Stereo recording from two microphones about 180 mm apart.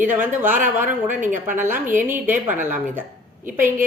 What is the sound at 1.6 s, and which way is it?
Speech, 10° right (ahead or behind).